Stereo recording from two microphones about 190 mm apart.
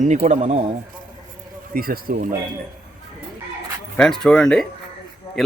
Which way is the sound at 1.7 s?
50° right (ahead or behind).